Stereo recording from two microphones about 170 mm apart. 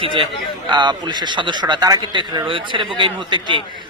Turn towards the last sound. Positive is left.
turn(degrees=-25)  # may be behind; listen again after turning